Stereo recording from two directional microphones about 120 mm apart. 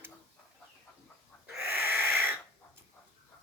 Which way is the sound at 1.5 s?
15° right (ahead or behind).